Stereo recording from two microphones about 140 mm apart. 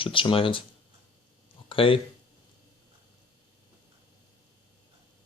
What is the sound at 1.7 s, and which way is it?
Speech, 40° left (ahead or behind).